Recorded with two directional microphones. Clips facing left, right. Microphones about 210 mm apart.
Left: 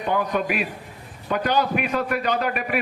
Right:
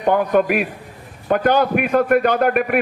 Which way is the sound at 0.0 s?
55° right (ahead or behind).